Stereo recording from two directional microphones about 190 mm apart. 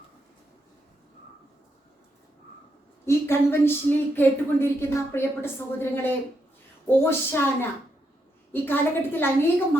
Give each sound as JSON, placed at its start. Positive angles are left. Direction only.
{"t": 3.1, "sound": "speech", "side_deg": 15}